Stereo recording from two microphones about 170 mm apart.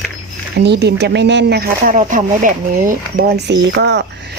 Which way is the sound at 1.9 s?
50° right (ahead or behind).